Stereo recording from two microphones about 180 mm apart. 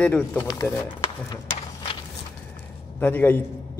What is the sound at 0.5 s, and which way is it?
Speech, 20° left (ahead or behind).